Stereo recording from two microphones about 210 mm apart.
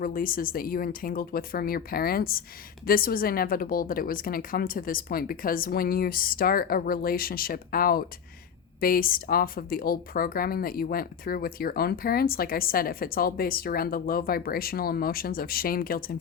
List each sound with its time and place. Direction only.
0.0 s speech: 40° left (ahead or behind)